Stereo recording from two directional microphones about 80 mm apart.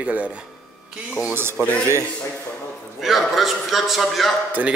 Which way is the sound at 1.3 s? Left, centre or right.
Right.